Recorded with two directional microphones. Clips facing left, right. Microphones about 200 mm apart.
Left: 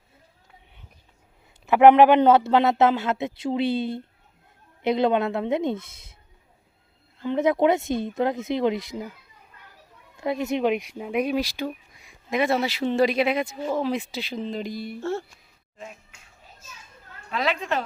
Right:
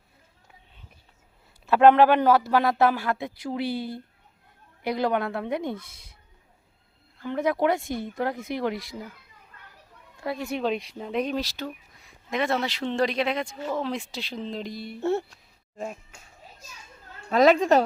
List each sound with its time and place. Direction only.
1.6 s speech: 15° left (ahead or behind)
7.2 s speech: 20° left (ahead or behind)
10.2 s speech: 20° left (ahead or behind); by 14.9 s centre (ahead or behind)
15.8 s speech: 45° right (ahead or behind)
17.3 s a woman's voice: 45° right (ahead or behind)